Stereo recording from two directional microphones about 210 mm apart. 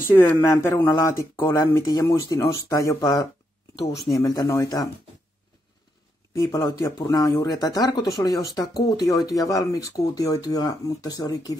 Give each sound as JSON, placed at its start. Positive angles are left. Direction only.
{"t": 0.0, "sound": "speech", "side_deg": 10}
{"t": 6.3, "sound": "speech", "side_deg": 15}